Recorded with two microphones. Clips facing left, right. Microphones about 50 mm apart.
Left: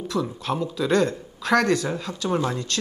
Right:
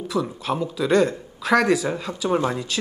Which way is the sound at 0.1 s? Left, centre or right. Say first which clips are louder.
Right 2 dB; centre.